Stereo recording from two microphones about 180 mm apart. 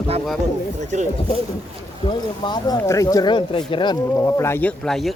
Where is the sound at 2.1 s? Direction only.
25° left (ahead or behind).